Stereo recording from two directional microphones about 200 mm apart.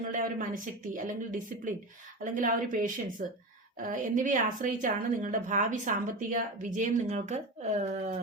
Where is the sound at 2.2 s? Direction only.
40° right (ahead or behind).